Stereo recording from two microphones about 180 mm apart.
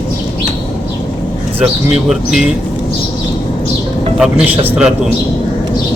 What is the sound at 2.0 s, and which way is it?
Speech, centre (ahead or behind).